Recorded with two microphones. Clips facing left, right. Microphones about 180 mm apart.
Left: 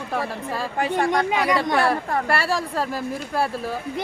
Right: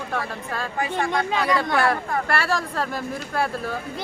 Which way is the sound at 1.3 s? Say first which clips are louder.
Left 1 dB; 15° left (ahead or behind).